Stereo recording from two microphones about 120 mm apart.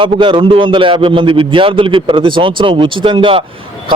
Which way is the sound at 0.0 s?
45° right (ahead or behind).